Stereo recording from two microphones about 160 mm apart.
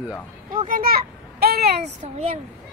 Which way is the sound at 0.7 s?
65° right (ahead or behind).